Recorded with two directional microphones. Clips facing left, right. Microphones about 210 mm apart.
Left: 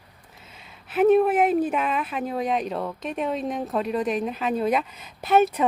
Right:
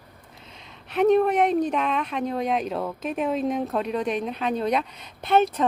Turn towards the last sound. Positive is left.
turn(degrees=10)  # may be behind; listen again after turning